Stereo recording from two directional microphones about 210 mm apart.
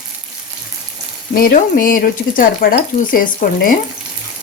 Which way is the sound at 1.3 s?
40° left (ahead or behind).